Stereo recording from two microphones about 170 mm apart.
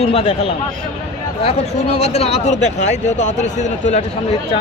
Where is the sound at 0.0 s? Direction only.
35° left (ahead or behind).